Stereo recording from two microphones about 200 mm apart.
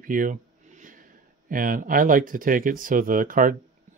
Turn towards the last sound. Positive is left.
turn(degrees=-45)  # may be behind; listen again after turning